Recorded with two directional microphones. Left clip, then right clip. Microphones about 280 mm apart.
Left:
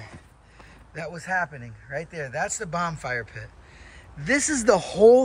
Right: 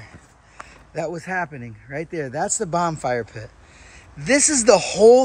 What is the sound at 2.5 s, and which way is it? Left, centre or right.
A man's voice, centre.